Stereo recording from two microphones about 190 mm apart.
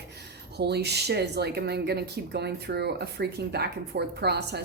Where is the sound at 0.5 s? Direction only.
60° right (ahead or behind).